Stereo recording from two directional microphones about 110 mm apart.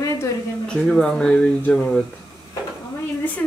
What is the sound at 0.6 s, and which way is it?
Speech, 5° left (ahead or behind).